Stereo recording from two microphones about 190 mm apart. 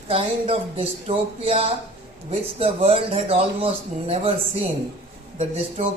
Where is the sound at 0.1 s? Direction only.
30° right (ahead or behind).